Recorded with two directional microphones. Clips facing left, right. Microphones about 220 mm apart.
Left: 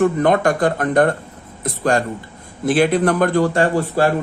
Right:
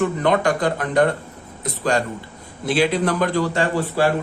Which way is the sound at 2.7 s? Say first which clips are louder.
Left 4 dB; 50° left (ahead or behind).